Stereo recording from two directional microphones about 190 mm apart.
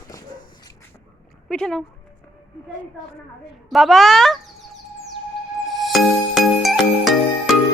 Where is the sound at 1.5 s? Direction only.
5° left (ahead or behind).